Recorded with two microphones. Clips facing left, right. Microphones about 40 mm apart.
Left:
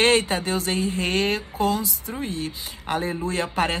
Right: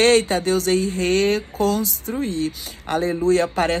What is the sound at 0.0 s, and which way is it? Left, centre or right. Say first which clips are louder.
Speech: right 4 dB; left.